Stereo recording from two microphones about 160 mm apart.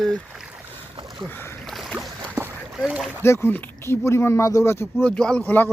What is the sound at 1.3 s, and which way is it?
Speech, 15° left (ahead or behind).